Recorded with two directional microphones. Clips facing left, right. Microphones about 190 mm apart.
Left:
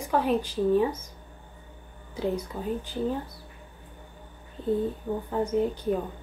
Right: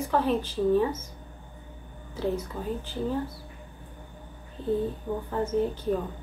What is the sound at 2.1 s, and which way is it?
Speech, 15° left (ahead or behind).